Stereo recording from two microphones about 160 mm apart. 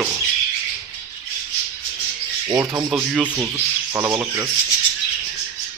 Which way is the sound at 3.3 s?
10° right (ahead or behind).